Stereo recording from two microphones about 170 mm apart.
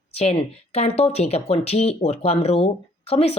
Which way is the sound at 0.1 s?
35° left (ahead or behind).